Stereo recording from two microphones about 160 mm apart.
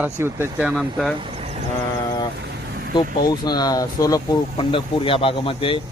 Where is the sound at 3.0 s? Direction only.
25° left (ahead or behind).